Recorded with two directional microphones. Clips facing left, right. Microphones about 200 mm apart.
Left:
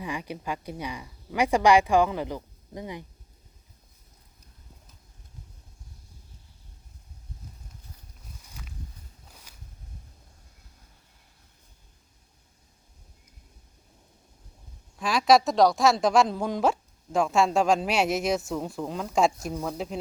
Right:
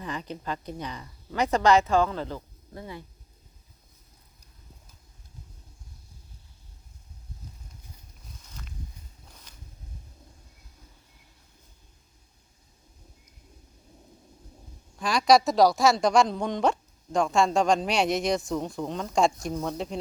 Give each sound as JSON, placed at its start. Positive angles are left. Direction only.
{"t": 0.0, "sound": "speech", "side_deg": 10}
{"t": 8.4, "sound": "a sound", "side_deg": 10}
{"t": 14.9, "sound": "a woman's voice", "side_deg": 0}